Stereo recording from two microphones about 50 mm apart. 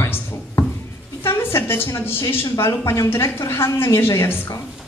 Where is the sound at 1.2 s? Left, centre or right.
Left.